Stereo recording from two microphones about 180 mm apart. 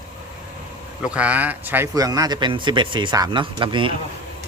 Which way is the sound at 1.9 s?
20° right (ahead or behind).